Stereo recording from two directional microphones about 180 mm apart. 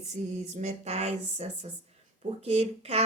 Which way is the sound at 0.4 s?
35° right (ahead or behind).